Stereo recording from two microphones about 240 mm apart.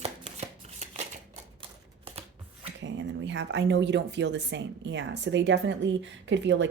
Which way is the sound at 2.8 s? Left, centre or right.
Right.